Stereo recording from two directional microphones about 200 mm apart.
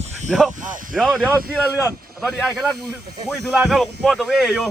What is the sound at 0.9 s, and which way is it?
Speech, centre (ahead or behind).